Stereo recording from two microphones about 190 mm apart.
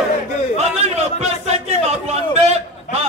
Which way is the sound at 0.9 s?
35° right (ahead or behind).